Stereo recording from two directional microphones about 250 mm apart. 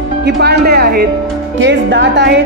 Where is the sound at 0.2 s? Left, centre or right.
Right.